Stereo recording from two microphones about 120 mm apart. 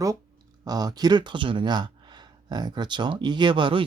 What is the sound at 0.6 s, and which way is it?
Speech, 35° right (ahead or behind).